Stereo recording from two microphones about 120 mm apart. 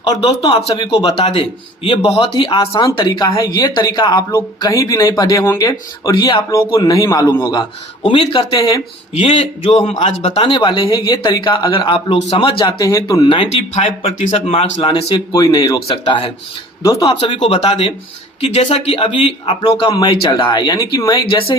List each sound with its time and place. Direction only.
0.1 s speech: 35° left (ahead or behind)
7.3 s speech: 20° left (ahead or behind)
8.0 s speech: 50° left (ahead or behind)
12.6 s speech: 30° left (ahead or behind)
13.2 s speech: 50° left (ahead or behind)
15.1 s speech: 35° left (ahead or behind)
15.9 s speech: 45° left (ahead or behind)
16.8 s speech: 25° left (ahead or behind)
17.1 s speech: 45° left (ahead or behind)
19.9 s speech: 35° left (ahead or behind)